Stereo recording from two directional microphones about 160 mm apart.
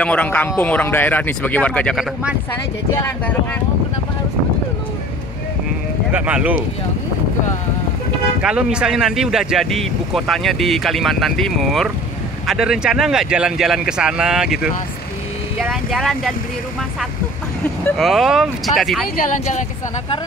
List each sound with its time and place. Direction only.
0.0 s speech: 10° left (ahead or behind)
6.1 s speech: 10° right (ahead or behind)
8.4 s speech: 5° right (ahead or behind)
15.7 s speech: centre (ahead or behind)
17.9 s speech: centre (ahead or behind)